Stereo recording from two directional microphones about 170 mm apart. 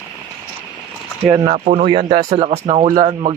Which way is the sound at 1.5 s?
45° right (ahead or behind).